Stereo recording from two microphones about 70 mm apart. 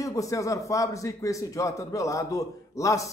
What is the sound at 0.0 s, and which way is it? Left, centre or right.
A man's voice, left.